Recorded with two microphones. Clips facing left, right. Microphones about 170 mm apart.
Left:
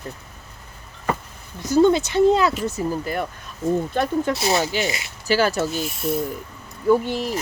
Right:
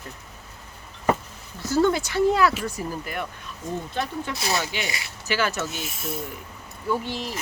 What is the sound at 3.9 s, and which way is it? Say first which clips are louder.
Speech: left 8 dB; 50° left (ahead or behind).